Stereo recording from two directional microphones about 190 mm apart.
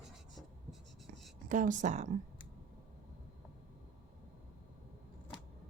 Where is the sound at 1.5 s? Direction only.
40° right (ahead or behind).